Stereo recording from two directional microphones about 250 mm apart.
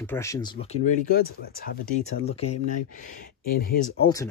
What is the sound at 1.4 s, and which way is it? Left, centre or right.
Speech, left.